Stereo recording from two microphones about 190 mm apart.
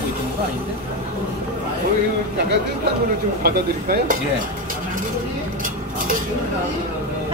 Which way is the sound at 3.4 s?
55° right (ahead or behind).